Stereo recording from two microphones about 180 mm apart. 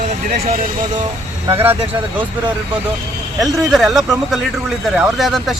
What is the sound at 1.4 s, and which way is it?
Speech, 10° right (ahead or behind).